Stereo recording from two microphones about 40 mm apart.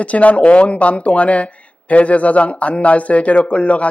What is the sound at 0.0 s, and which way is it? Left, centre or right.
A man's voice, left.